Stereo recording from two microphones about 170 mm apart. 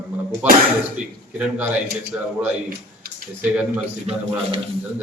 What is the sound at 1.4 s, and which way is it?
Speech, 10° right (ahead or behind).